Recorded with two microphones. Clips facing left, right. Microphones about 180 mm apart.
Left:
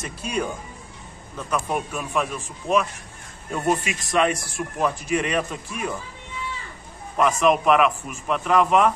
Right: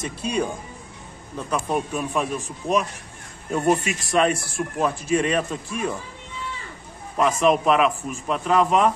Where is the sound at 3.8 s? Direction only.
30° right (ahead or behind).